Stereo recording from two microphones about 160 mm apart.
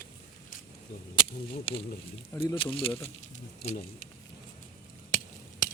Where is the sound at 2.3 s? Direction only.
10° left (ahead or behind).